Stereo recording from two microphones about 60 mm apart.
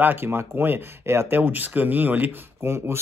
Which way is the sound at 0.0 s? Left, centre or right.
Right.